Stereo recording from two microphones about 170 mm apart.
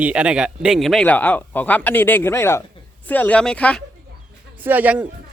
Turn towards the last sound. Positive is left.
turn(degrees=-10)  # may be behind; listen again after turning